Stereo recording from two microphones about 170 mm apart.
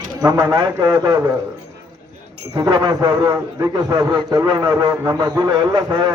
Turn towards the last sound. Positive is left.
turn(degrees=-25)  # may be behind; listen again after turning